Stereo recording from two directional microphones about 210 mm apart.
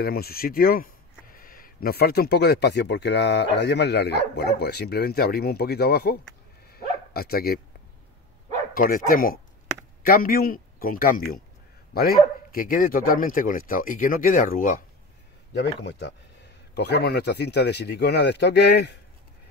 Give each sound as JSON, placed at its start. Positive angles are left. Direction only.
{"t": 0.0, "sound": "speech", "side_deg": 45}
{"t": 6.7, "sound": "bow-wow", "side_deg": 45}
{"t": 8.7, "sound": "speech", "side_deg": 45}
{"t": 15.8, "sound": "speech", "side_deg": 55}